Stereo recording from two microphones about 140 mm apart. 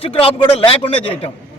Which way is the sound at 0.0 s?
45° left (ahead or behind).